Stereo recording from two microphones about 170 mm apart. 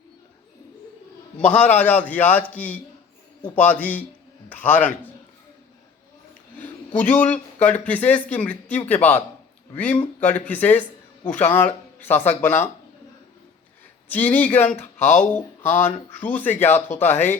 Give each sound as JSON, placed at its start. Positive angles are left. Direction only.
{"t": 1.4, "sound": "a man's voice", "side_deg": 10}
{"t": 6.6, "sound": "a man's voice", "side_deg": 10}
{"t": 14.1, "sound": "a man's voice", "side_deg": 10}
{"t": 14.9, "sound": "speech", "side_deg": 40}
{"t": 15.2, "sound": "a man's voice", "side_deg": 10}